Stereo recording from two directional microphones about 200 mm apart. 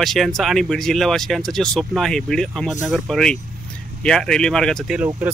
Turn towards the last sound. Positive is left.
turn(degrees=0)  # may be behind; listen again after turning